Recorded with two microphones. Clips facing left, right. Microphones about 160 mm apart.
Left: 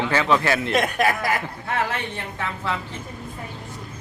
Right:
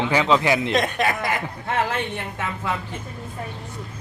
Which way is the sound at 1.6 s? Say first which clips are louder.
Right 2 dB; 20° right (ahead or behind).